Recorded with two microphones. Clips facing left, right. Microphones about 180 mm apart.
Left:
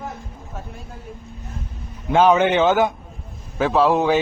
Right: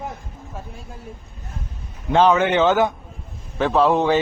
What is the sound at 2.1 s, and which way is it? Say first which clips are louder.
Speech: left 1 dB; 10° left (ahead or behind).